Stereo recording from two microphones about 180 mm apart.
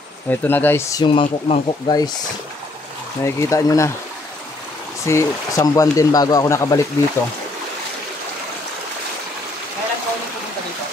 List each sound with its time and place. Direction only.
0.3 s speech: 10° left (ahead or behind); by 2.0 s 25° left (ahead or behind)
3.3 s speech: 15° left (ahead or behind)
5.0 s speech: 15° left (ahead or behind)